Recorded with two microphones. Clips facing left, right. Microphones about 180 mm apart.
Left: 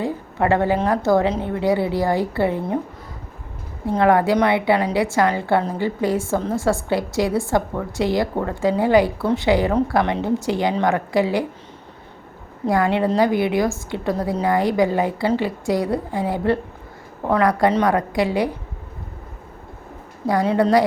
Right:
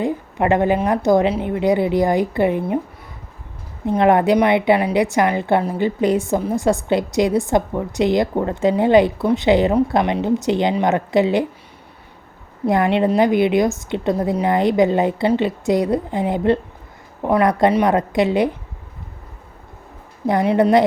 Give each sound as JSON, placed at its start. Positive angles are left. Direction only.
{"t": 0.0, "sound": "a woman's voice", "side_deg": -20}
{"t": 3.8, "sound": "a woman's voice", "side_deg": -20}
{"t": 12.6, "sound": "a woman's voice", "side_deg": -20}
{"t": 20.2, "sound": "a woman's voice", "side_deg": -20}